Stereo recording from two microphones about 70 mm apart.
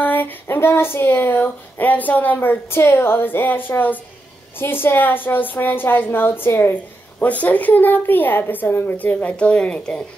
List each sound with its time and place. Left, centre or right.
0.0 s a woman's voice: left